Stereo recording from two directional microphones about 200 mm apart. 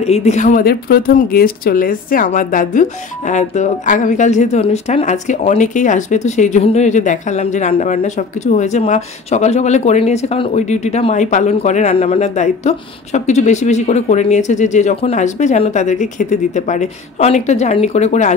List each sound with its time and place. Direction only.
0.0 s a woman's voice: 30° left (ahead or behind)